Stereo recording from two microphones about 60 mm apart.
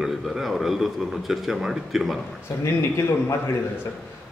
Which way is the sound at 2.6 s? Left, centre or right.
Left.